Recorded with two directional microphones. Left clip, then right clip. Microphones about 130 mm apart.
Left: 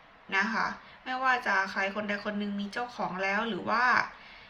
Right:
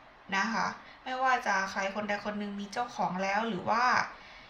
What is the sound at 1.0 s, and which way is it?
A woman's voice, 25° right (ahead or behind).